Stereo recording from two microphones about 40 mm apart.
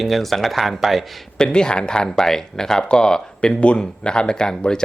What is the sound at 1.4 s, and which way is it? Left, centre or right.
Speech, centre.